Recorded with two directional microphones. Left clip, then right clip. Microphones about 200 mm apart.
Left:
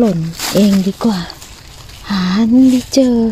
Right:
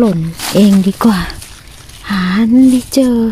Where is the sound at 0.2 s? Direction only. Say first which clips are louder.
Right 2 dB; centre (ahead or behind); by 1.3 s 15° right (ahead or behind).